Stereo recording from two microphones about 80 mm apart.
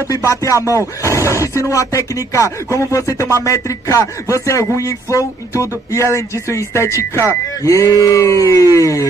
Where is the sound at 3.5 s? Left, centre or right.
Left.